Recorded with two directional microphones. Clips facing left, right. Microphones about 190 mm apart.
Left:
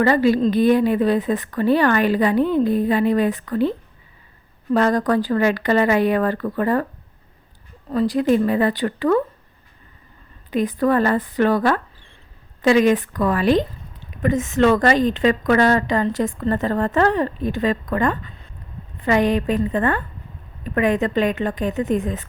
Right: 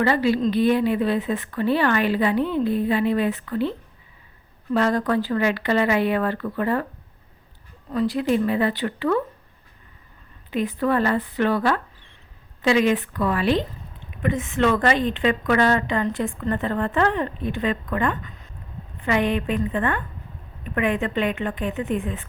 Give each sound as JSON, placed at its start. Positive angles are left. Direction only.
{"t": 0.0, "sound": "a woman's voice", "side_deg": 45}
{"t": 4.7, "sound": "a woman's voice", "side_deg": 45}
{"t": 7.9, "sound": "a woman's voice", "side_deg": 40}
{"t": 10.5, "sound": "a woman's voice", "side_deg": 40}